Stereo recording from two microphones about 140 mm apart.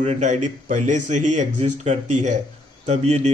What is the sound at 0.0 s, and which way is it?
A man's voice, 55° right (ahead or behind).